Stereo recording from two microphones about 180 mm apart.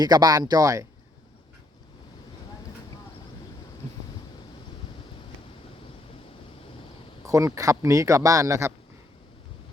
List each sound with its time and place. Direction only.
0.0 s speech: 20° right (ahead or behind)
7.3 s speech: 20° right (ahead or behind)